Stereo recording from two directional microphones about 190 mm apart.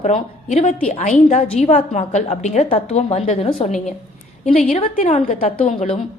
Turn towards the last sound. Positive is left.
turn(degrees=35)  # may be behind; listen again after turning